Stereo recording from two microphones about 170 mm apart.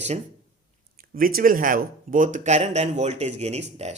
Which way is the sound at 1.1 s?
60° right (ahead or behind).